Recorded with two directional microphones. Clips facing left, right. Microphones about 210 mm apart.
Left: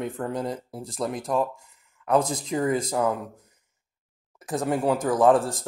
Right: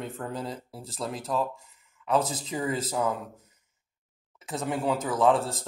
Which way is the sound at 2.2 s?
10° left (ahead or behind).